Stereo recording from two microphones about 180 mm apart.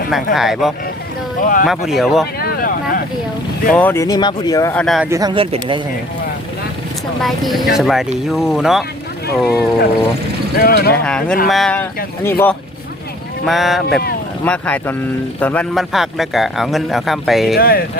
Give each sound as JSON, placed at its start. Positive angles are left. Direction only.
{"t": 0.3, "sound": "a man's voice", "side_deg": 0}
{"t": 1.4, "sound": "speech", "side_deg": 50}
{"t": 1.6, "sound": "a man's voice", "side_deg": 0}
{"t": 2.4, "sound": "a sound", "side_deg": 55}
{"t": 3.7, "sound": "speech", "side_deg": 10}
{"t": 4.8, "sound": "a man's voice", "side_deg": 0}
{"t": 5.0, "sound": "speech", "side_deg": -15}
{"t": 5.3, "sound": "speech", "side_deg": -30}
{"t": 7.2, "sound": "a man's voice", "side_deg": 0}
{"t": 10.5, "sound": "speech", "side_deg": 55}
{"t": 10.9, "sound": "a man's voice", "side_deg": 5}
{"t": 13.4, "sound": "a man's voice", "side_deg": 0}
{"t": 17.6, "sound": "speech", "side_deg": 55}